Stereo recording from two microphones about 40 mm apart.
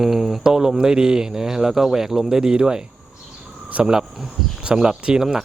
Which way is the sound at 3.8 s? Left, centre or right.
Centre.